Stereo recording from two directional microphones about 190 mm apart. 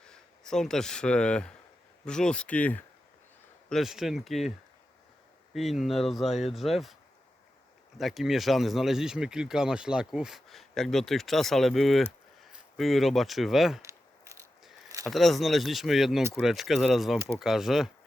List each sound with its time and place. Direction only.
0.0 s speech: 5° left (ahead or behind)
5.5 s speech: centre (ahead or behind)
7.9 s speech: centre (ahead or behind)
13.8 s a sound: 15° right (ahead or behind)
15.0 s speech: centre (ahead or behind)